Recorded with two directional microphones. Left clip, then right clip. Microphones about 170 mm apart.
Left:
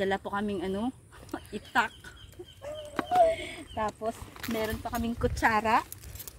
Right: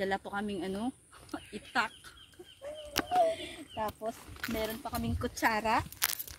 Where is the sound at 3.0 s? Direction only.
10° left (ahead or behind).